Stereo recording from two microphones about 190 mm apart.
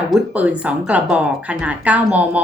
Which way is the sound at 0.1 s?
5° right (ahead or behind).